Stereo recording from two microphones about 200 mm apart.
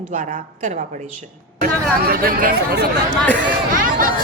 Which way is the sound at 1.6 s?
50° right (ahead or behind).